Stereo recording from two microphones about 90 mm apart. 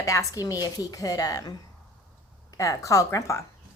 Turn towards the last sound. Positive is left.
turn(degrees=35)  # may be behind; listen again after turning